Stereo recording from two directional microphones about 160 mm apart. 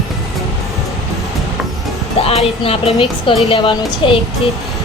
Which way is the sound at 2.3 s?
40° left (ahead or behind).